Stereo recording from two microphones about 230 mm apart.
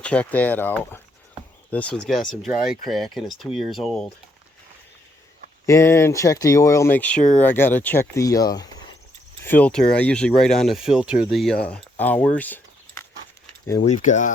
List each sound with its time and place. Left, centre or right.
0.0 s speech: centre
5.6 s speech: centre
13.8 s speech: left